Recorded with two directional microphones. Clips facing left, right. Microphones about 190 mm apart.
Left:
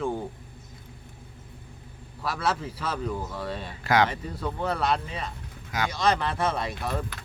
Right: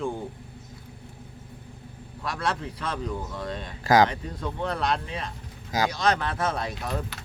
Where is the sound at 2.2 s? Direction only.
5° left (ahead or behind).